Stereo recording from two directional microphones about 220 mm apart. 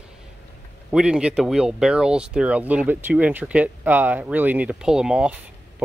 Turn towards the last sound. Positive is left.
turn(degrees=-5)  # may be behind; listen again after turning